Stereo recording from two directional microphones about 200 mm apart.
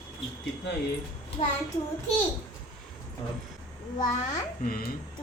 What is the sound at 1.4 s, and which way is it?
Speech, 30° left (ahead or behind).